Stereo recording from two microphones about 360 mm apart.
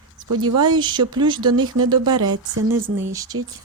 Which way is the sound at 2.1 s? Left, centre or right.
Right.